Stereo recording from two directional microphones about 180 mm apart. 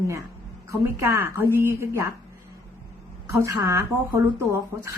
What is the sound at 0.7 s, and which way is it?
Speech, 15° right (ahead or behind).